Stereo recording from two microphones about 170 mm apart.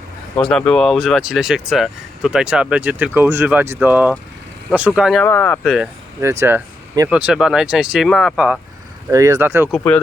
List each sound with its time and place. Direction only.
0.3 s speech: 5° left (ahead or behind)
5.2 s speech: 10° left (ahead or behind)
5.6 s speech: centre (ahead or behind)
6.4 s speech: 15° right (ahead or behind)
7.1 s speech: 5° right (ahead or behind)
9.0 s speech: 20° right (ahead or behind)